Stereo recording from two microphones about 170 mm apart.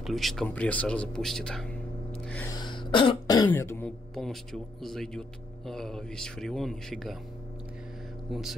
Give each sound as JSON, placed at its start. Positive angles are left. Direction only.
{"t": 0.0, "sound": "speech", "side_deg": 0}
{"t": 2.2, "sound": "gasp", "side_deg": 10}
{"t": 2.5, "sound": "speech", "side_deg": 25}
{"t": 8.3, "sound": "speech", "side_deg": 0}